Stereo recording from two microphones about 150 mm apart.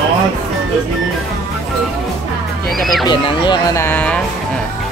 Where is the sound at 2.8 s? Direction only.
Centre (ahead or behind).